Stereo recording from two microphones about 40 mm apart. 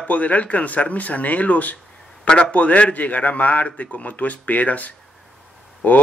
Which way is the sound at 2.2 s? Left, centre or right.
Left.